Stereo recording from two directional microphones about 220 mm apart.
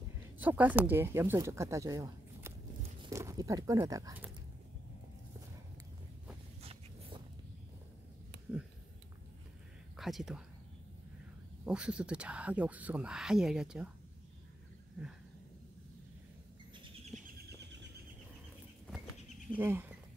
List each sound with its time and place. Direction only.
0.4 s speech: 5° right (ahead or behind)
6.6 s a sound: 25° right (ahead or behind)
9.9 s speech: centre (ahead or behind)
11.6 s speech: 5° right (ahead or behind)
19.6 s speech: 10° right (ahead or behind)